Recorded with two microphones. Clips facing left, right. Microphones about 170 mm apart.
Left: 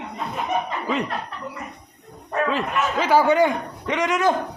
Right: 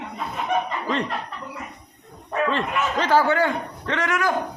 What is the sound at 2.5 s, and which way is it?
A man's voice, 5° left (ahead or behind).